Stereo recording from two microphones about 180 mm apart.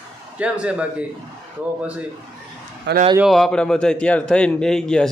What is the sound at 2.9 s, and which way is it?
Speech, 70° right (ahead or behind).